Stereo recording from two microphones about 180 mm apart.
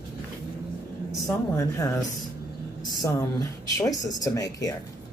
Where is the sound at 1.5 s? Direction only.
20° left (ahead or behind).